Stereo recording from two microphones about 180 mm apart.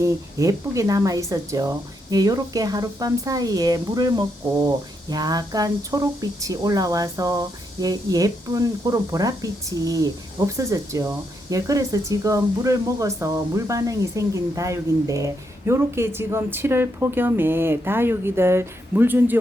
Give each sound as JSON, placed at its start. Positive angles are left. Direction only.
{"t": 0.0, "sound": "speech", "side_deg": -15}